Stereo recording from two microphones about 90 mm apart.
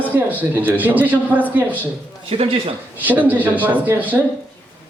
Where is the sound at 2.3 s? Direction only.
90° right.